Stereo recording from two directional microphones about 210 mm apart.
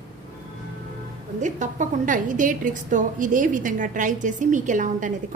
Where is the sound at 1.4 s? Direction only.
35° right (ahead or behind).